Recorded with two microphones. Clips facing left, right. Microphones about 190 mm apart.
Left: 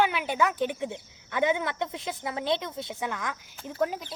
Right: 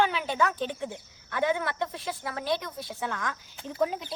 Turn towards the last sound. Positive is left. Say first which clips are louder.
# right 1 dB
turn(degrees=0)  # may be behind; listen again after turning